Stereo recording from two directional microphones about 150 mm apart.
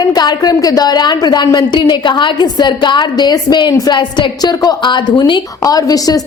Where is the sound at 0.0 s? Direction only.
25° left (ahead or behind).